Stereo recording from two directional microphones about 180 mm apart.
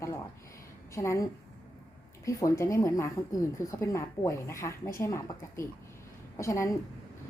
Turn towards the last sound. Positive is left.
turn(degrees=15)  # may be behind; listen again after turning